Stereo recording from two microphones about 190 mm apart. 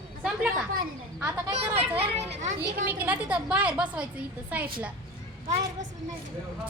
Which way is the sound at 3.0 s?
5° right (ahead or behind).